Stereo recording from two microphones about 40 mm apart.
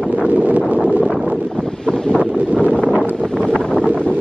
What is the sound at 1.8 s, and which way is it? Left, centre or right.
Wind noise, centre.